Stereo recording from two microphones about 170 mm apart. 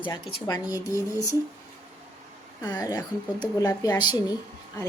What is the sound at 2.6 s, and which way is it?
A woman's voice, 20° left (ahead or behind).